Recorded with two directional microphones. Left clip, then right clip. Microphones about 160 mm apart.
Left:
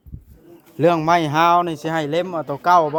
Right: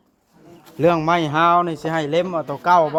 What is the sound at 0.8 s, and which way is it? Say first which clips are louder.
Speech: left 1 dB; 35° left (ahead or behind).